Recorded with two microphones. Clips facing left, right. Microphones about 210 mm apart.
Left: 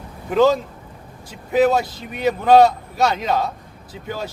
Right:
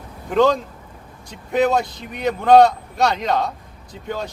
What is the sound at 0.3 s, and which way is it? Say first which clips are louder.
A man's voice: left 1 dB; 5° left (ahead or behind).